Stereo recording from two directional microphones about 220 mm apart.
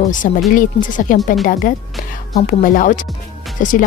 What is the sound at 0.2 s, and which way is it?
Speech, 40° left (ahead or behind).